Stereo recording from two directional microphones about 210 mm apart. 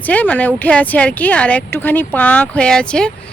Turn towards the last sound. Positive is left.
turn(degrees=5)  # may be behind; listen again after turning